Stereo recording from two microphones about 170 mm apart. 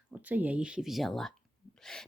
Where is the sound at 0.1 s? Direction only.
10° right (ahead or behind).